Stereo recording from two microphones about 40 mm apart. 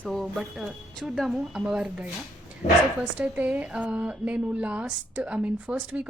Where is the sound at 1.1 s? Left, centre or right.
Centre; by 2.0 s right.